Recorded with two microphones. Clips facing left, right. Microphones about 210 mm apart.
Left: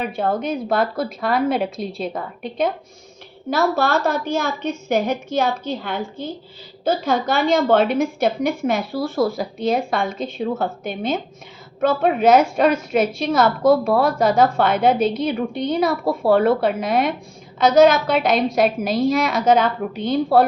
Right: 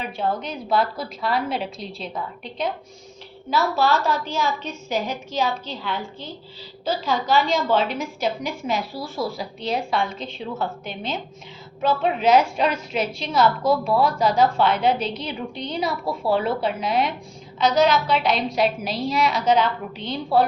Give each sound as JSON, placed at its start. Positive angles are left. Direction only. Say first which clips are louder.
{"t": 0.0, "sound": "a woman's voice", "louder": "left 4 dB", "side_deg": 50}